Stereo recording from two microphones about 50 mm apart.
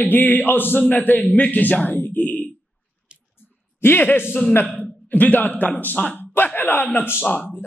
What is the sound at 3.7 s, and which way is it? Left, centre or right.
A man's voice, left.